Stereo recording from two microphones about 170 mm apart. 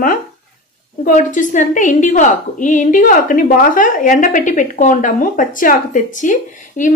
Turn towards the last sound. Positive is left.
turn(degrees=50)  # may be behind; listen again after turning